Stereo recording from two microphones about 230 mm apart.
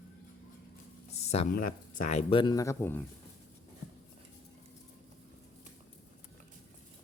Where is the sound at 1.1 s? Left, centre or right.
Left.